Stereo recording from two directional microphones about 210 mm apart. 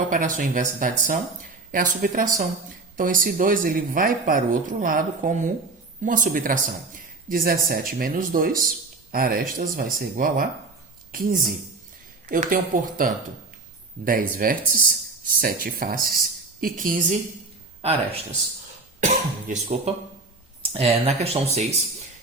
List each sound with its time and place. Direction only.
0.1 s speech: 40° right (ahead or behind)
18.9 s speech: 35° right (ahead or behind)